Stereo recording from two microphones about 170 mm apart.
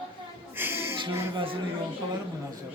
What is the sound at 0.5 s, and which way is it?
Music, 15° right (ahead or behind).